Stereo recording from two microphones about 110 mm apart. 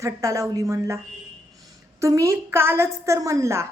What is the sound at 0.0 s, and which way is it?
A woman's voice, 30° right (ahead or behind).